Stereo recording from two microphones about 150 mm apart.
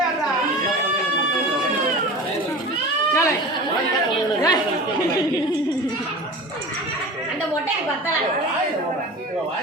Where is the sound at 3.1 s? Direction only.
20° left (ahead or behind).